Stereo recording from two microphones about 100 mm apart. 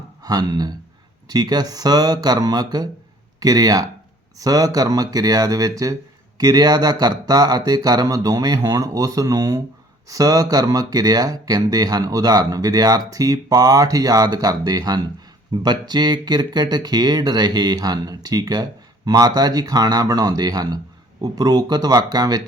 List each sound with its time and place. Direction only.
0.2 s speech: 45° right (ahead or behind)